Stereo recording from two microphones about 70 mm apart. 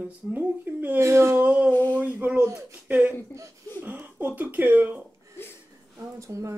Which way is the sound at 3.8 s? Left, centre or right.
Right.